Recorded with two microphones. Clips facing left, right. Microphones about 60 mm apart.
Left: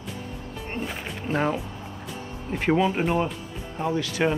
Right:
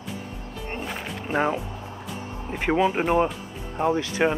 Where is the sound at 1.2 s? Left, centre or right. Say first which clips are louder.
Right 1 dB; centre.